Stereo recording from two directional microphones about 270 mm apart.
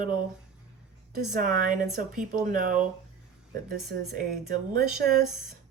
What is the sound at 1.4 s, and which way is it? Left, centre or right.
Speech, right.